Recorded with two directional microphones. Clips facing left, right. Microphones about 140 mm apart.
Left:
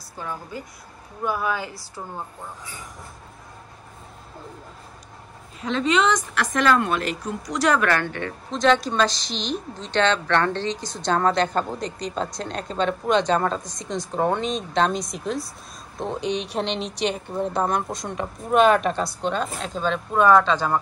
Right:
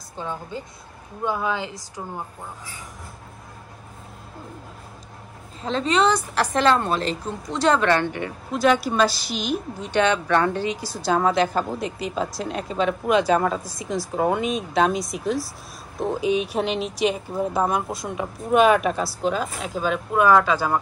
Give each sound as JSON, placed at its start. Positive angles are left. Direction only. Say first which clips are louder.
{"t": 0.2, "sound": "a woman's voice", "louder": "right 2 dB", "side_deg": -20}
{"t": 5.6, "sound": "a woman's voice", "louder": "even", "side_deg": -35}